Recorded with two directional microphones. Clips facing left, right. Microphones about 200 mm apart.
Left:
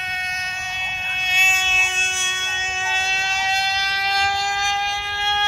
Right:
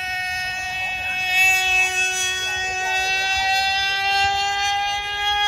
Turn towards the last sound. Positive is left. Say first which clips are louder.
# even
turn(degrees=-15)  # may be behind; listen again after turning